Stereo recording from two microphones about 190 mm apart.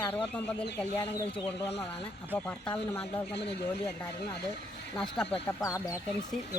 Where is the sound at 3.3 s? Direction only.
60° left (ahead or behind).